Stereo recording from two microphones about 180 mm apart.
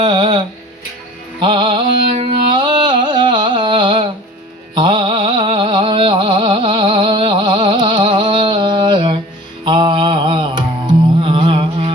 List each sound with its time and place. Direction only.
0.0 s music: 25° right (ahead or behind)
4.7 s a sound: 25° right (ahead or behind)
9.6 s mantra: 25° right (ahead or behind)